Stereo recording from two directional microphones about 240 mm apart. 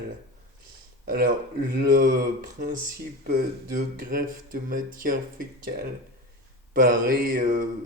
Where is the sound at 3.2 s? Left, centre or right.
Right.